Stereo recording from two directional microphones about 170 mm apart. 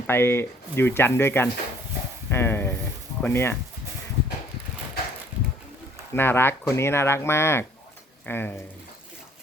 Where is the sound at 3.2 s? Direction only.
15° left (ahead or behind).